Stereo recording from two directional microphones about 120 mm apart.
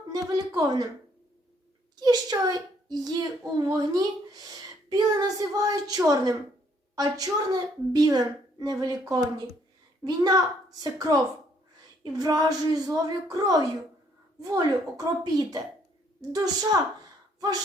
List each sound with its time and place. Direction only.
0.1 s a child's voice: 30° right (ahead or behind)
2.0 s a child's voice: 35° right (ahead or behind)